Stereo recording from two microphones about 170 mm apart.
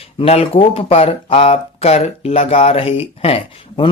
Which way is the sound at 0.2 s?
35° left (ahead or behind).